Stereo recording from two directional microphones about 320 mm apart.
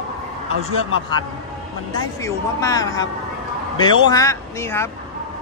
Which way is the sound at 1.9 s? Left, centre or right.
Centre.